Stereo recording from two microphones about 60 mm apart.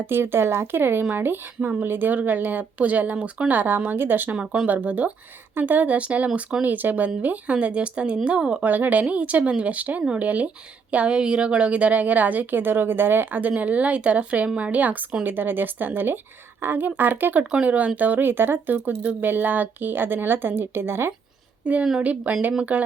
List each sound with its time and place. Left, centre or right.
0.0 s a woman's voice: right
4.4 s a woman's voice: centre
8.6 s a woman's voice: right
17.4 s speech: centre; by 21.1 s right
21.6 s a woman's voice: right